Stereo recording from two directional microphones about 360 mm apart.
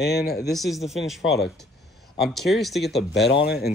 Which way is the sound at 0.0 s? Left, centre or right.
Left.